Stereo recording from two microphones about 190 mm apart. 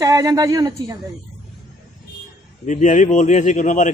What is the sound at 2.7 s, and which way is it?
Speech, 40° left (ahead or behind).